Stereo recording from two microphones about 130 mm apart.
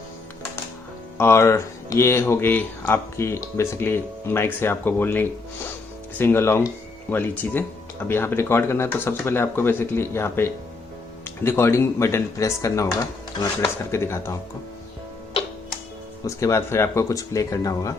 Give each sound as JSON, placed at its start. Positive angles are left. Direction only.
{"t": 1.2, "sound": "speech", "side_deg": 20}
{"t": 16.2, "sound": "speech", "side_deg": 25}